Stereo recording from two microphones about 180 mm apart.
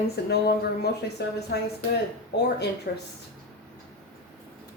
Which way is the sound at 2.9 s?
60° left (ahead or behind).